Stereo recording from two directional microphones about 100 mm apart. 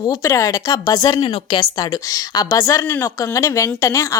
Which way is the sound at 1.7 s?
40° left (ahead or behind).